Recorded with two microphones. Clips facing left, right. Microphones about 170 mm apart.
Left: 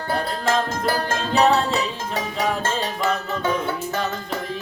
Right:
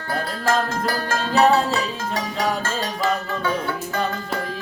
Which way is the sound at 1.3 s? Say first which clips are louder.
Right 1 dB; centre (ahead or behind).